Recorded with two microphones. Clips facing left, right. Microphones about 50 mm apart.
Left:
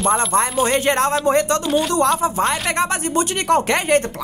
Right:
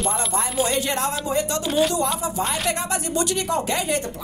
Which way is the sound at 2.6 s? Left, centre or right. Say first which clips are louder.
Left 5 dB; left.